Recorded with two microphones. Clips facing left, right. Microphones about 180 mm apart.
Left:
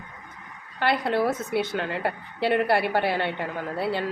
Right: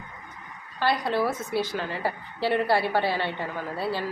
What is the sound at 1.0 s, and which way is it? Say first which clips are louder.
Speech: left 2 dB; 25° left (ahead or behind).